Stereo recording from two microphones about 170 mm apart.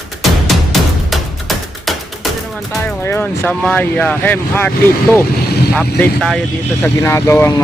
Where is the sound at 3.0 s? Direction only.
10° left (ahead or behind).